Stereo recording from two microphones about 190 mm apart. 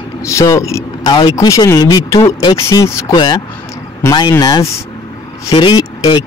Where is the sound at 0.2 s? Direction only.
15° left (ahead or behind).